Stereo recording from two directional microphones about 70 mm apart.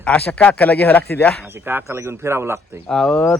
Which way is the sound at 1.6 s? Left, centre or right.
Right.